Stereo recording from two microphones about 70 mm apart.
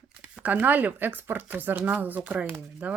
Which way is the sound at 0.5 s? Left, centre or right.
Right.